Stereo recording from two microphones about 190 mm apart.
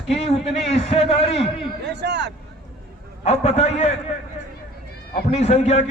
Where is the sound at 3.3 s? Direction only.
35° left (ahead or behind).